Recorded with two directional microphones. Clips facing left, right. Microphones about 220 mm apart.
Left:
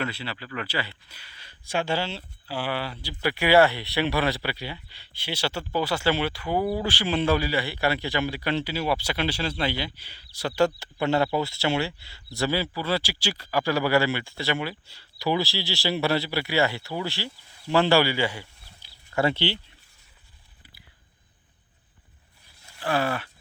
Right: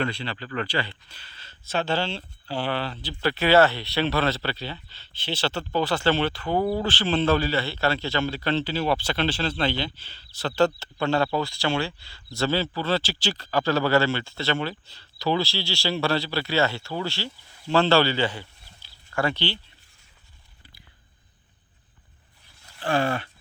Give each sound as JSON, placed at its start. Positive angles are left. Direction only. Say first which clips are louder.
{"t": 0.0, "sound": "speech", "louder": "right 3 dB", "side_deg": 5}
{"t": 23.0, "sound": "speech", "louder": "right 2 dB", "side_deg": -25}